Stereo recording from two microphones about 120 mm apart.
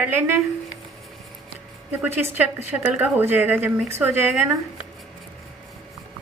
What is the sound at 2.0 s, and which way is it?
A woman's voice, 15° right (ahead or behind).